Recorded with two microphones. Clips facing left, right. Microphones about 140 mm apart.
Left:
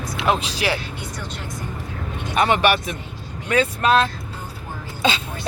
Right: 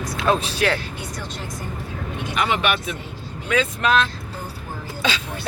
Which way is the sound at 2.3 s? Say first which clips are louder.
Left 4 dB; 40° left (ahead or behind).